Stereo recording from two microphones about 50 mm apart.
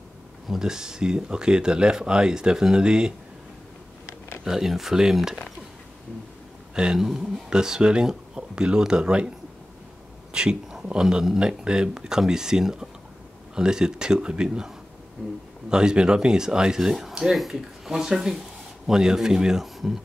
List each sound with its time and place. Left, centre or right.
0.5 s speech: centre
4.5 s speech: centre
6.7 s speech: centre
7.1 s speech: centre
10.3 s speech: centre
15.2 s speech: centre
15.7 s speech: centre